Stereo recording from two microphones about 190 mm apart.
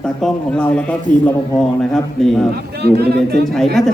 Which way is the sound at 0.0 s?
5° left (ahead or behind).